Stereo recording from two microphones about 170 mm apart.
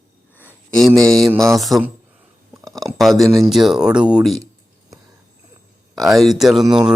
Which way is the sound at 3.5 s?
5° right (ahead or behind).